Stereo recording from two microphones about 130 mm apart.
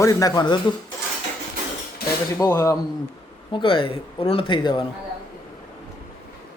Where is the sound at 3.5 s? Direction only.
40° left (ahead or behind).